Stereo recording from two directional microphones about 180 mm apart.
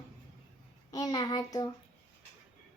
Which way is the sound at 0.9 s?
20° left (ahead or behind).